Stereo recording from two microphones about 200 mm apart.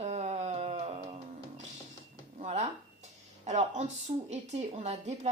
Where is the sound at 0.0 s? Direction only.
35° right (ahead or behind).